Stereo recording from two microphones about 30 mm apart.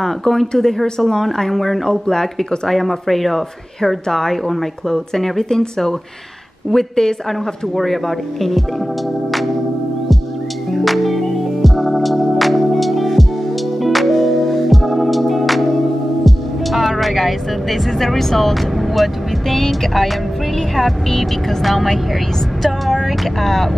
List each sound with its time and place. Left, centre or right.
0.0 s speech: centre
1.9 s speech: centre
2.7 s speech: centre
3.8 s speech: centre
7.7 s speech: centre
10.8 s music: centre
16.3 s speech: centre
21.6 s speech: centre
23.4 s speech: centre